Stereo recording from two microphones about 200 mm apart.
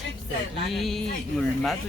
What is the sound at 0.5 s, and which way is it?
Speech, centre (ahead or behind).